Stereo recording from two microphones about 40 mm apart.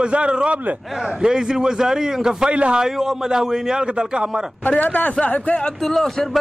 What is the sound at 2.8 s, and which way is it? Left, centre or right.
A man's voice, centre.